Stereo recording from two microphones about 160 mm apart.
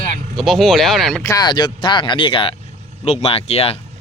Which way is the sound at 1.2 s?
20° left (ahead or behind).